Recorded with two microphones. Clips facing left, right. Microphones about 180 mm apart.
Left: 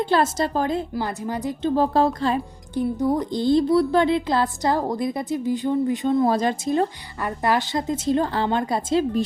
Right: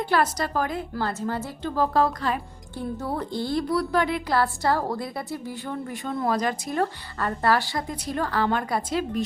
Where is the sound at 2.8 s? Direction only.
15° left (ahead or behind).